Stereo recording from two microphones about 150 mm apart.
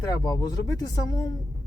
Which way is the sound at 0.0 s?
25° left (ahead or behind).